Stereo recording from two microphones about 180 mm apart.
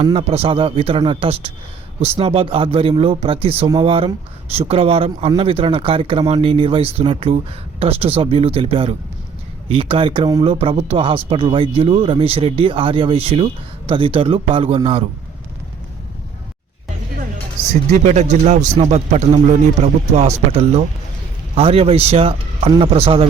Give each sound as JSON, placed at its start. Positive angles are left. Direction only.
{"t": 0.0, "sound": "speech", "side_deg": -30}
{"t": 17.9, "sound": "speech", "side_deg": -40}